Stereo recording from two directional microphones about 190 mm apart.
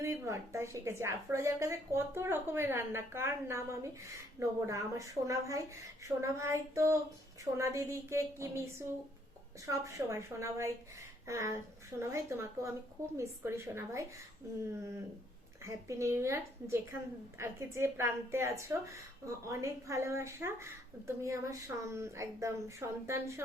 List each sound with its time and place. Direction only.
0.0 s a woman's voice: 15° right (ahead or behind)
15.6 s a woman's voice: 15° right (ahead or behind)